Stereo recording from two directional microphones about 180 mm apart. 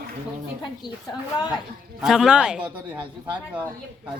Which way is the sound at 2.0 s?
5° right (ahead or behind).